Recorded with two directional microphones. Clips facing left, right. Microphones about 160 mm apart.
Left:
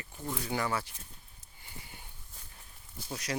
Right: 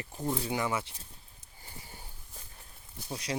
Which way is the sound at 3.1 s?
25° right (ahead or behind).